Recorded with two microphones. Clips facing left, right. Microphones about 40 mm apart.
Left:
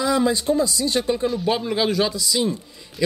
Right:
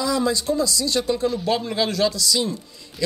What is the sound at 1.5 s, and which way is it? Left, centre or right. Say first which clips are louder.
Speech: left 1 dB; centre.